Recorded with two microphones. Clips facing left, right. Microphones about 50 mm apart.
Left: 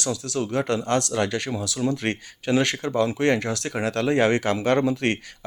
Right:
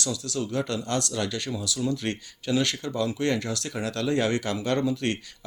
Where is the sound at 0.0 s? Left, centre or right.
Left.